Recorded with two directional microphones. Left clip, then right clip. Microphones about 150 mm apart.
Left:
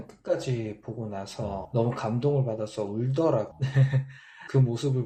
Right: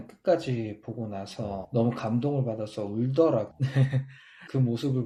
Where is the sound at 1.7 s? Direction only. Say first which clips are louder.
Right 1 dB; 35° right (ahead or behind).